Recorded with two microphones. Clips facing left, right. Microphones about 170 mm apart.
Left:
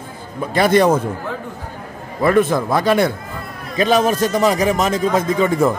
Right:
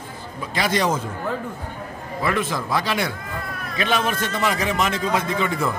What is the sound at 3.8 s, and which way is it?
A man's voice, 40° left (ahead or behind).